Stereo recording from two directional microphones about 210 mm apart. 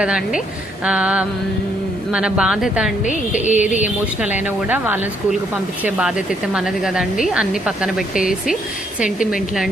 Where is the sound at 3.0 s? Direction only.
35° left (ahead or behind).